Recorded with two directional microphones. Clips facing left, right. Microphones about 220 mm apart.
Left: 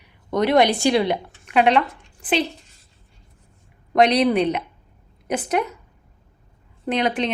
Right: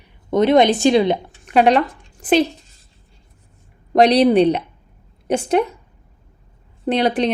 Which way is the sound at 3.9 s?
35° right (ahead or behind).